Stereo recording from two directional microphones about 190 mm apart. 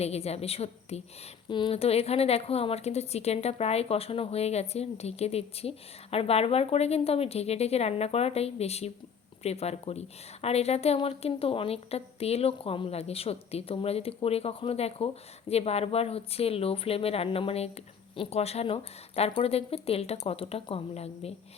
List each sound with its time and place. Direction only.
0.0 s a woman's voice: 35° left (ahead or behind)